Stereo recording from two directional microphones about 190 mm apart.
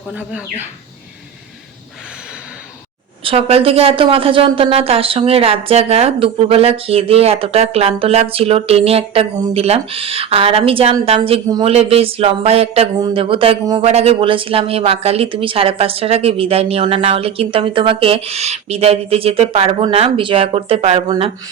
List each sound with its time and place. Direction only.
0.1 s speech: 5° right (ahead or behind)
3.2 s a woman's voice: 30° right (ahead or behind)